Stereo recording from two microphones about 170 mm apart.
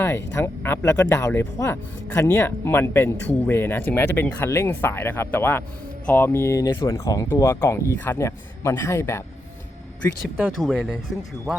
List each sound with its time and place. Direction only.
0.3 s speech: 15° left (ahead or behind)
10.6 s speech: centre (ahead or behind)